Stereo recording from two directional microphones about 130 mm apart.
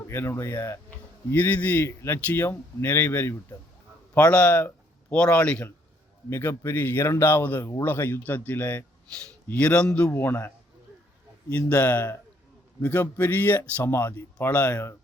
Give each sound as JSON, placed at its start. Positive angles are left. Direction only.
{"t": 0.1, "sound": "speech", "side_deg": 20}
{"t": 4.1, "sound": "speech", "side_deg": 10}
{"t": 11.5, "sound": "speech", "side_deg": 10}